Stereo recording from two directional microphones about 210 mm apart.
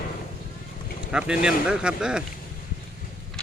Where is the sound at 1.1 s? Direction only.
5° right (ahead or behind).